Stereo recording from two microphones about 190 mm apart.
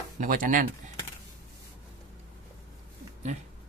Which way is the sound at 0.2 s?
45° right (ahead or behind).